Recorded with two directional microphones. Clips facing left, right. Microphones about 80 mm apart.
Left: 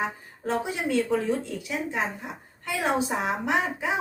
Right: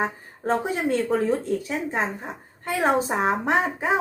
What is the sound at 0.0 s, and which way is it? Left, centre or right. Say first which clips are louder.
A woman's voice: right 3 dB; right.